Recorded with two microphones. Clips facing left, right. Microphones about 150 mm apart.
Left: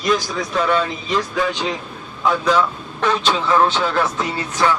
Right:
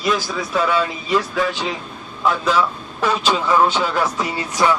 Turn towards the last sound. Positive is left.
turn(degrees=-10)  # may be behind; listen again after turning